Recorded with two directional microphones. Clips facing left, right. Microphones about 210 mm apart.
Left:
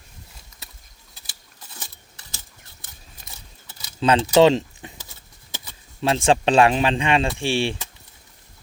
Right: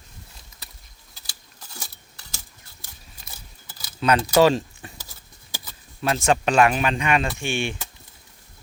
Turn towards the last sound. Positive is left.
turn(degrees=30)  # may be behind; listen again after turning